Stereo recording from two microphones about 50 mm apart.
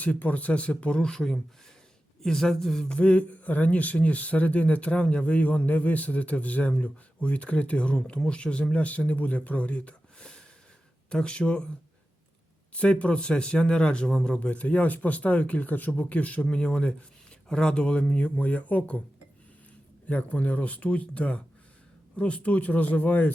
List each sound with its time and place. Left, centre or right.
0.0 s a woman's voice: left; by 2.8 s centre
2.8 s speech: left
12.7 s speech: left
14.3 s speech: left
20.1 s speech: left